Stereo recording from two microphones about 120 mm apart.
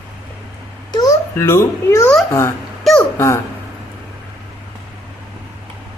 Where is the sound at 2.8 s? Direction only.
Centre (ahead or behind).